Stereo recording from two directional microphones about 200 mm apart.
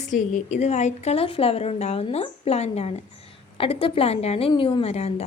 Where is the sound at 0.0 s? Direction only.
40° left (ahead or behind).